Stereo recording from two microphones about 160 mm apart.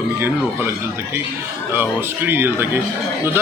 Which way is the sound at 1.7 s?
15° right (ahead or behind).